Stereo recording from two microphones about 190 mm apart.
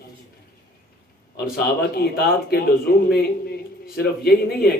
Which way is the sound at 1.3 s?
55° left (ahead or behind).